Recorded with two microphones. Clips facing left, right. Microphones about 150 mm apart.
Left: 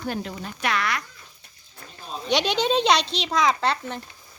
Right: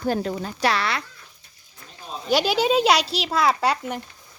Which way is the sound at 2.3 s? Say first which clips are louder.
Right 2 dB; 5° right (ahead or behind).